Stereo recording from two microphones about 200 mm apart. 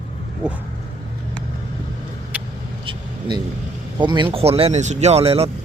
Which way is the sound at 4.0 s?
25° right (ahead or behind).